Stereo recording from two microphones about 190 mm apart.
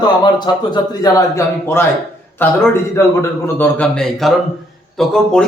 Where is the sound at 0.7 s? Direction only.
20° left (ahead or behind).